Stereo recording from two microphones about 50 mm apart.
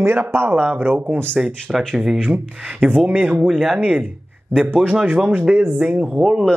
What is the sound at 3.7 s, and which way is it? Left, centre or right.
Speech, right.